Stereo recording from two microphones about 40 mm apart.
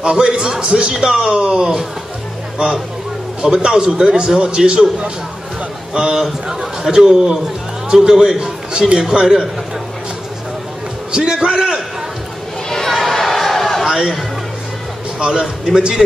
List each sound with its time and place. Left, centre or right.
0.0 s a man's voice: right
3.6 s a man's voice: centre
5.9 s a man's voice: right
6.2 s a man's voice: centre
11.1 s a man's voice: right
12.6 s a sound: centre
13.8 s chatter: centre
15.1 s a man's voice: right